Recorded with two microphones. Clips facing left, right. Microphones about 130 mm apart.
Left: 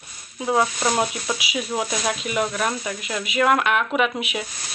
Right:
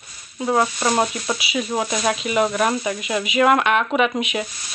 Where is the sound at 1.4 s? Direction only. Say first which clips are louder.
Right 3 dB; 10° left (ahead or behind).